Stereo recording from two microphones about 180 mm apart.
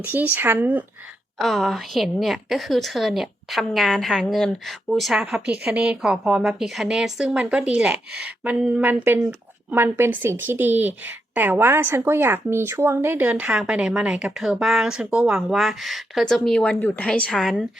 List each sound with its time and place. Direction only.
0.0 s a woman's voice: 10° right (ahead or behind)